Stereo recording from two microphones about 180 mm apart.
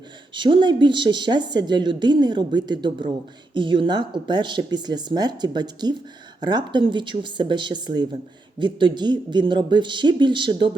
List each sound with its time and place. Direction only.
0.3 s a woman's voice: 25° right (ahead or behind)